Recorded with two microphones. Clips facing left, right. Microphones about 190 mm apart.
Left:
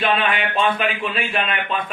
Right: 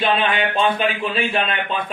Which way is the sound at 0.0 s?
30° right (ahead or behind).